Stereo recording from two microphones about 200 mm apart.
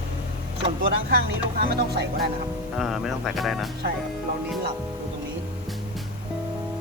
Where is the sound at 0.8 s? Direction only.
50° right (ahead or behind).